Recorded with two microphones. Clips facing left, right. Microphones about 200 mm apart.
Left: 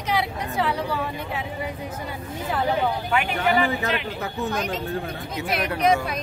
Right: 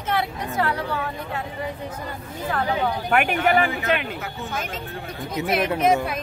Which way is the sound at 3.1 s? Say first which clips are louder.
Right 4 dB; 55° right (ahead or behind).